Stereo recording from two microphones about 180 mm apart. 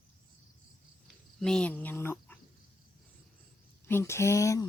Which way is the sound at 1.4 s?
5° left (ahead or behind).